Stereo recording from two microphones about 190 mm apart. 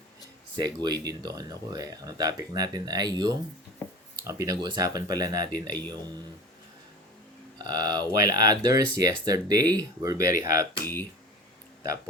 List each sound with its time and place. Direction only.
0.5 s speech: 20° right (ahead or behind)
3.8 s a sound: 15° left (ahead or behind)
4.3 s speech: 20° right (ahead or behind)
7.6 s speech: 20° right (ahead or behind)